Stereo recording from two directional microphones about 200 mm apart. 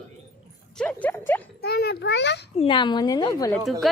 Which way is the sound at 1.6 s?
50° left (ahead or behind).